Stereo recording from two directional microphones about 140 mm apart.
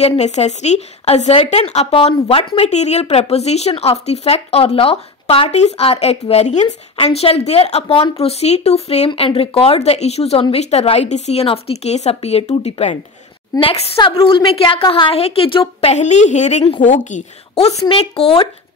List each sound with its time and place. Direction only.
0.0 s speech: 50° left (ahead or behind)
17.8 s speech: 45° left (ahead or behind)